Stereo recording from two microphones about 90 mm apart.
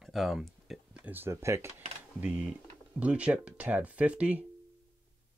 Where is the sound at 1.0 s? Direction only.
25° right (ahead or behind).